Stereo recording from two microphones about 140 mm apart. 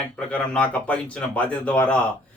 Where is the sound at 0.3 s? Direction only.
10° left (ahead or behind).